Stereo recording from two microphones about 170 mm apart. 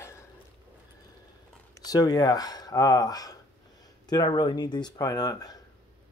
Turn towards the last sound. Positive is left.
turn(degrees=20)  # may be behind; listen again after turning